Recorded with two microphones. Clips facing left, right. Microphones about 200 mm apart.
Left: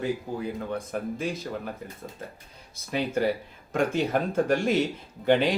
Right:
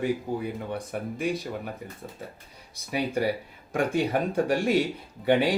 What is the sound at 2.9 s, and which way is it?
Speech, 15° right (ahead or behind).